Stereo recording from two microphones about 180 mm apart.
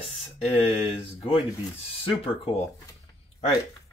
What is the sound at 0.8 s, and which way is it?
Speech, 30° left (ahead or behind).